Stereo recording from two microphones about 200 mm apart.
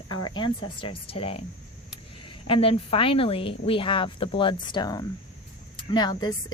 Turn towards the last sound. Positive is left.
turn(degrees=20)  # may be behind; listen again after turning